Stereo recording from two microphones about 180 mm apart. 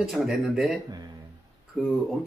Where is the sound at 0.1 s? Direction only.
Centre (ahead or behind).